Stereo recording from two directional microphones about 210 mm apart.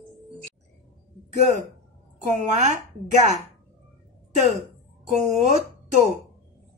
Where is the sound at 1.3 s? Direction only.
35° right (ahead or behind).